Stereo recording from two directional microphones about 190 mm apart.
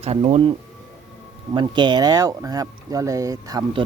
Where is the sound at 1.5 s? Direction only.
25° right (ahead or behind).